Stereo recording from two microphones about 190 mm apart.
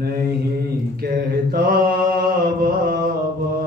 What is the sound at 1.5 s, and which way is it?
Mantra, 50° right (ahead or behind).